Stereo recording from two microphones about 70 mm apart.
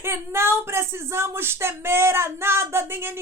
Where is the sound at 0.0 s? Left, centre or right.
Right.